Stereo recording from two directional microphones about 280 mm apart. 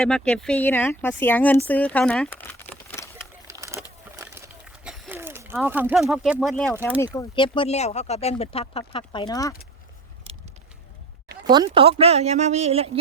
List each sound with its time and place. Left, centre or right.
0.0 s speech: centre
3.4 s a sound: centre
7.0 s speech: centre
11.4 s a woman's voice: centre